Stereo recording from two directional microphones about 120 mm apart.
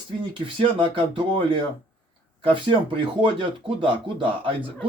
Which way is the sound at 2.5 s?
45° right (ahead or behind).